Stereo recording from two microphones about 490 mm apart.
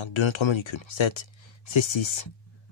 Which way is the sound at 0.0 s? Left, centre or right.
Left.